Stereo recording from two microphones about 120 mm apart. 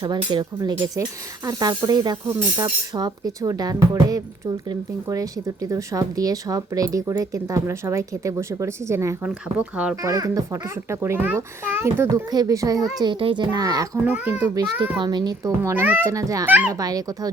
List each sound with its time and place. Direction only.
0.0 s speech: 40° right (ahead or behind); by 9.1 s 25° right (ahead or behind)
9.2 s speech: 10° right (ahead or behind)
9.9 s speech: 25° right (ahead or behind)
13.0 s speech: 45° right (ahead or behind)
14.0 s speech: 15° right (ahead or behind)
14.9 s speech: 40° right (ahead or behind)
15.7 s speech: 15° right (ahead or behind)
16.1 s speech: 30° right (ahead or behind)
16.5 s speech: 15° right (ahead or behind)
16.7 s speech: 30° right (ahead or behind)